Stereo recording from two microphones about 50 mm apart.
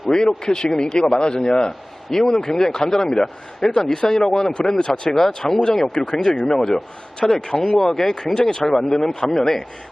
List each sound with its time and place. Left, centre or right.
0.1 s a man's voice: centre